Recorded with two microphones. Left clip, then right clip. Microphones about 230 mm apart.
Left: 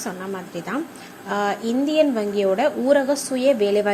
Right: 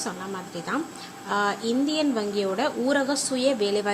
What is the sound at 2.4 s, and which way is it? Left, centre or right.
Speech, centre.